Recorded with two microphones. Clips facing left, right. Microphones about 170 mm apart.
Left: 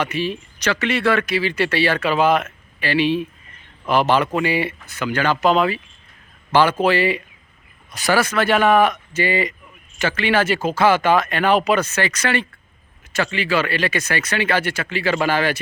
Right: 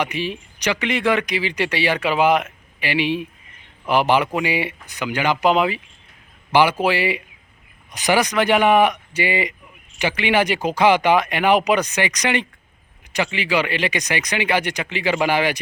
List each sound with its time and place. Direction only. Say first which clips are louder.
0.0 s speech: left 1 dB; 15° right (ahead or behind)